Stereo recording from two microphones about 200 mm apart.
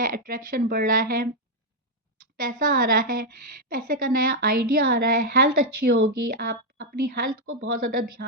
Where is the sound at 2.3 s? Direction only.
45° right (ahead or behind).